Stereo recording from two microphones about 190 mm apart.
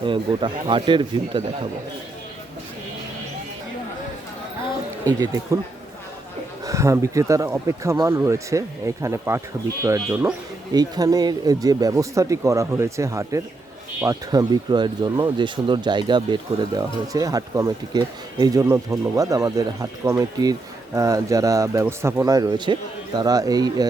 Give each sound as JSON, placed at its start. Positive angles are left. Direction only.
{"t": 0.0, "sound": "speech", "side_deg": -25}
{"t": 5.0, "sound": "speech", "side_deg": -15}
{"t": 6.7, "sound": "speech", "side_deg": -15}